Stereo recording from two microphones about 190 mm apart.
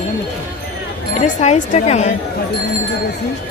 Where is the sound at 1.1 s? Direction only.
40° left (ahead or behind).